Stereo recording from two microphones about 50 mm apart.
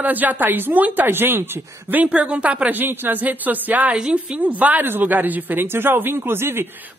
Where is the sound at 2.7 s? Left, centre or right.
Right.